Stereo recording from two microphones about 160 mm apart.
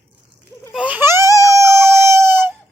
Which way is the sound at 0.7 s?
10° right (ahead or behind).